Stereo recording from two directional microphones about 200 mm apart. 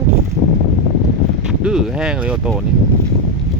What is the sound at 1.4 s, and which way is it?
Speech, 5° right (ahead or behind).